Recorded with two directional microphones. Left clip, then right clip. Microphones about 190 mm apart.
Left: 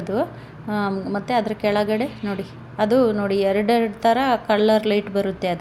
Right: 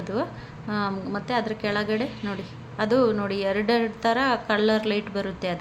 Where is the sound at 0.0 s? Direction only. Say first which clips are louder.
Left 5 dB; 15° left (ahead or behind).